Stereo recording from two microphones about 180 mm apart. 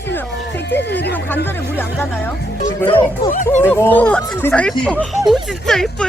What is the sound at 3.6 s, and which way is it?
Speech, 10° left (ahead or behind).